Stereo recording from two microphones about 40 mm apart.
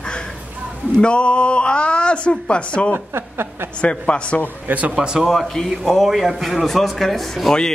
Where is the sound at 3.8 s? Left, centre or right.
Left.